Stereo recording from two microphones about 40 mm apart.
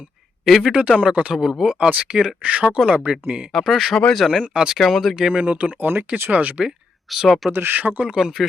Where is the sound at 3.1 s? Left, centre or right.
Right.